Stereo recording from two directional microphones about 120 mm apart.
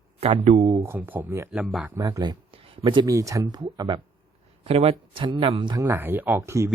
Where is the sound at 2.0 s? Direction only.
30° right (ahead or behind).